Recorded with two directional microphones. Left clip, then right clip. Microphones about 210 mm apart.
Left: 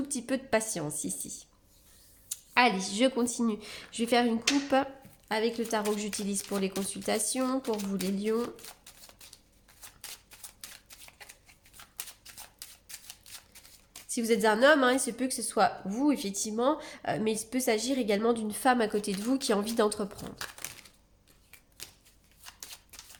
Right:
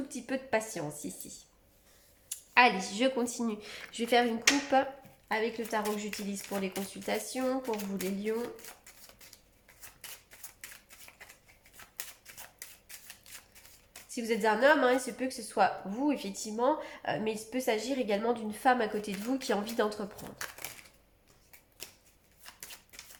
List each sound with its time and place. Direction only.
0.1 s a woman's voice: 45° left (ahead or behind)
2.3 s speech: 25° left (ahead or behind)
5.3 s a woman's voice: 45° left (ahead or behind)
14.1 s a woman's voice: 45° left (ahead or behind)